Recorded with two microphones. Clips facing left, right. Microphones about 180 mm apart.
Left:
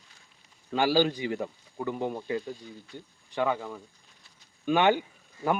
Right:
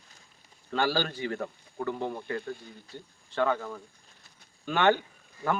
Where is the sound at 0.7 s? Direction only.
15° left (ahead or behind).